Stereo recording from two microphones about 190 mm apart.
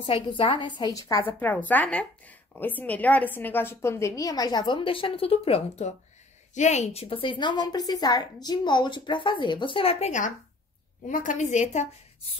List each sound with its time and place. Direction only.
0.0 s a woman's voice: 25° left (ahead or behind)